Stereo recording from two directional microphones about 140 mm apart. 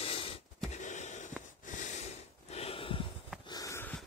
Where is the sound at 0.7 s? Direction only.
60° left (ahead or behind).